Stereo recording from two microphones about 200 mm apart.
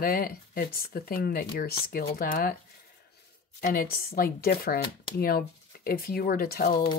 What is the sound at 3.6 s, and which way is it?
Speech, 50° left (ahead or behind).